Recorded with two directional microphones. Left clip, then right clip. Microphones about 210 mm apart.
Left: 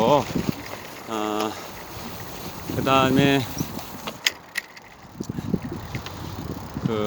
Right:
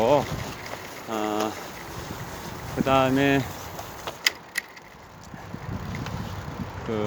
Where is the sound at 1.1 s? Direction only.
15° left (ahead or behind).